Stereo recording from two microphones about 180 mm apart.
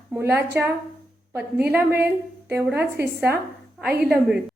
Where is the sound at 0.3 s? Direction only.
15° right (ahead or behind).